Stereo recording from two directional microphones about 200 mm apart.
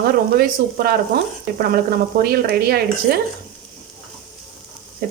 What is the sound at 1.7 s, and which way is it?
Speech, 50° right (ahead or behind).